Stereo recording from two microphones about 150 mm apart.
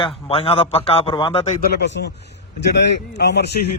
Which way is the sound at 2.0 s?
90° left.